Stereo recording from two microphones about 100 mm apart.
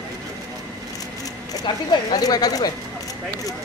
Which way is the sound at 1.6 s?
45° left (ahead or behind).